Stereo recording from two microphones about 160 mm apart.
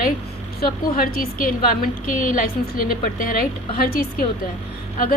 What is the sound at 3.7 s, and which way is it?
Speech, 65° left (ahead or behind).